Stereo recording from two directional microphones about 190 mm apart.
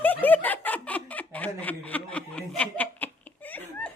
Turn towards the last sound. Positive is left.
turn(degrees=5)  # may be behind; listen again after turning